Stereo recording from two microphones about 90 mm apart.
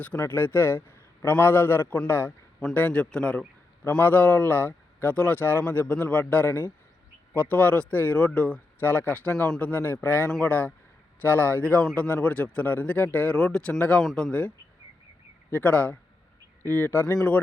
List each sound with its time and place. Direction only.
0.2 s a man's voice: 25° left (ahead or behind)
2.6 s speech: 15° left (ahead or behind)
14.0 s speech: 5° left (ahead or behind)